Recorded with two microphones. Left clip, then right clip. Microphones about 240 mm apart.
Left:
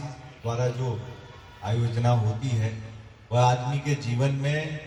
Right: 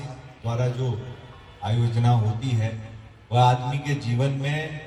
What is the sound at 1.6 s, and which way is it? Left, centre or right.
A man's voice, right.